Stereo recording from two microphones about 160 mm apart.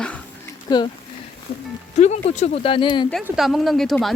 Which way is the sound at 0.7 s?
25° left (ahead or behind).